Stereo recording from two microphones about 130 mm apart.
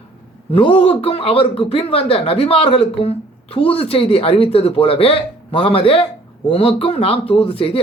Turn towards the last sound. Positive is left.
turn(degrees=45)  # may be behind; listen again after turning